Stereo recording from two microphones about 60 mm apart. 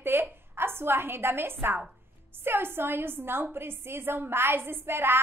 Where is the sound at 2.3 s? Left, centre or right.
Right.